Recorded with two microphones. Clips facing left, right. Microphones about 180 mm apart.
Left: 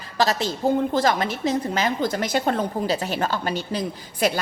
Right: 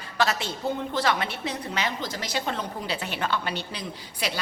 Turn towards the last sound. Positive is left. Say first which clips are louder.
# left 8 dB
turn(degrees=50)  # may be behind; listen again after turning